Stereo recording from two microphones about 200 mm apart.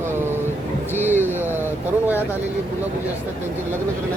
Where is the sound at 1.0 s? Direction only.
10° right (ahead or behind).